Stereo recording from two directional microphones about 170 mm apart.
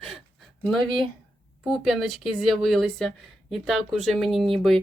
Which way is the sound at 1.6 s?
Centre (ahead or behind).